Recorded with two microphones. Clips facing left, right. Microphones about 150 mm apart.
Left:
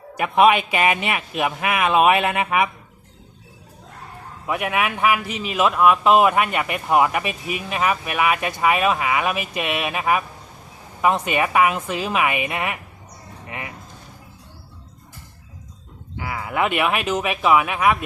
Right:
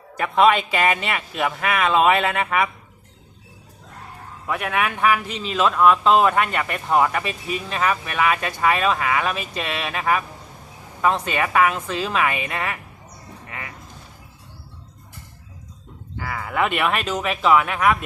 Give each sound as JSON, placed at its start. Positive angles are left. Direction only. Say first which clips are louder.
{"t": 0.2, "sound": "a man's voice", "louder": "left 1 dB", "side_deg": 15}
{"t": 4.4, "sound": "a man's voice", "louder": "left 1 dB", "side_deg": 15}
{"t": 13.5, "sound": "a sound", "louder": "left 3 dB", "side_deg": 20}
{"t": 16.1, "sound": "speech", "louder": "left 1 dB", "side_deg": 10}